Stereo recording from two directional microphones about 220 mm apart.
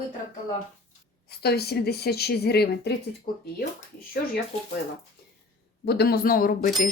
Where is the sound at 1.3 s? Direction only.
45° left (ahead or behind).